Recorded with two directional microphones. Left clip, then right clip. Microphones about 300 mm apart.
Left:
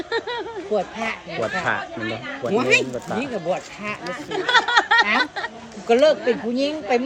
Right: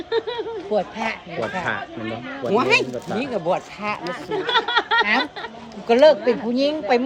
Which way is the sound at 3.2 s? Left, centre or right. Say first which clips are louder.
Right 5 dB; centre.